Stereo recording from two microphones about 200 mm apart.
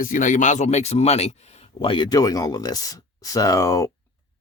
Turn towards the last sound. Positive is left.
turn(degrees=15)  # may be behind; listen again after turning